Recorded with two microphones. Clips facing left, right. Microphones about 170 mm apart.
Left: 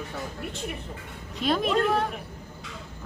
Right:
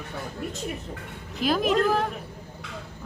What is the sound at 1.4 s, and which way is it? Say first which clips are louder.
Speech: right 2 dB; centre (ahead or behind).